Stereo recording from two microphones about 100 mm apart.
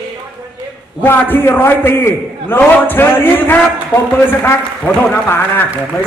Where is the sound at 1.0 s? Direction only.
20° left (ahead or behind).